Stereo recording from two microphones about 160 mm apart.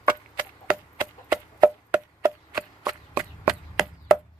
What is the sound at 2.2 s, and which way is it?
Chop, 15° right (ahead or behind).